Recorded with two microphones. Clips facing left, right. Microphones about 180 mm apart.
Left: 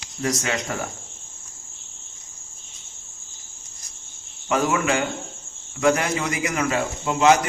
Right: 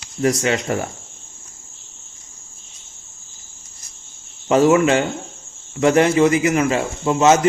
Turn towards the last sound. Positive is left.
turn(degrees=-25)  # may be behind; listen again after turning